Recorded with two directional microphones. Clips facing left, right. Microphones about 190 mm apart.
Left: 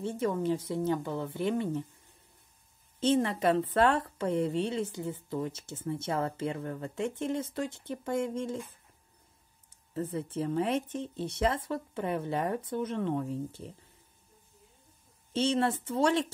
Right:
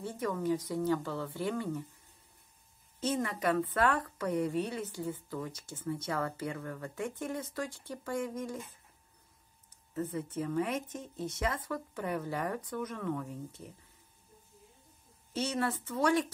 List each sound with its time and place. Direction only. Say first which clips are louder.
0.0 s a woman's voice: left 4 dB; 25° left (ahead or behind)
3.0 s a woman's voice: left 6 dB; 30° left (ahead or behind)
9.9 s a woman's voice: left 2 dB; 30° left (ahead or behind)
15.3 s a woman's voice: left 5 dB; 25° left (ahead or behind)